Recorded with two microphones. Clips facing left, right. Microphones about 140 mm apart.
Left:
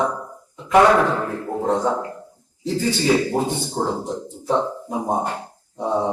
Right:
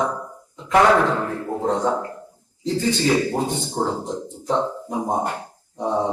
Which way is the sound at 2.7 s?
10° left (ahead or behind).